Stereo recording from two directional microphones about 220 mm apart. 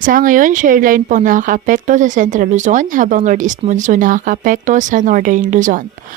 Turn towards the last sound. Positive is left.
turn(degrees=-35)  # may be behind; listen again after turning